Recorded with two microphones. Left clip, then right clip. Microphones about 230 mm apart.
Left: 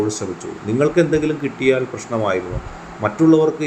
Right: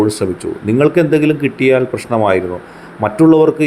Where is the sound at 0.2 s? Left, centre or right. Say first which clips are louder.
Right 8 dB; right.